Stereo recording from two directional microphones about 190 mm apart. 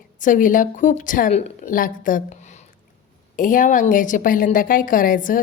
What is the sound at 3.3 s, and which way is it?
A woman's voice, 45° left (ahead or behind).